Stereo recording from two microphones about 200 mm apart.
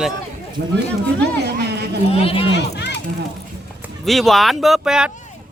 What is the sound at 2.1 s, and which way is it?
Speech, 30° left (ahead or behind).